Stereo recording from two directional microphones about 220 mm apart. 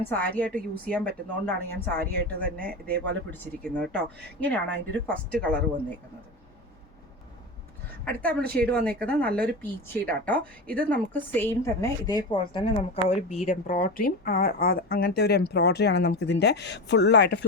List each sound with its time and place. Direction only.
0.1 s a woman's voice: 5° left (ahead or behind)
8.0 s a woman's voice: 5° left (ahead or behind); by 17.4 s 50° left (ahead or behind)